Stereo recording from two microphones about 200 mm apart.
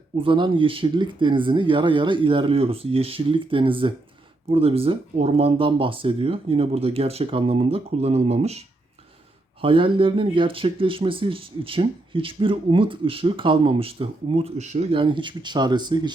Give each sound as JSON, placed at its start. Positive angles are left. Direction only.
{"t": 0.2, "sound": "speech", "side_deg": -25}